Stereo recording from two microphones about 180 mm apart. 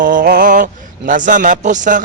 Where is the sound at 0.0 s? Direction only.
50° right (ahead or behind).